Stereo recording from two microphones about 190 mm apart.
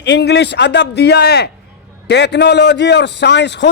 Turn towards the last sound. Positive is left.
turn(degrees=65)  # may be behind; listen again after turning